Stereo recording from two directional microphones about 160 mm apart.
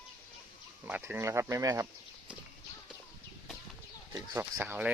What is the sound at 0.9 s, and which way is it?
Speech, 10° right (ahead or behind).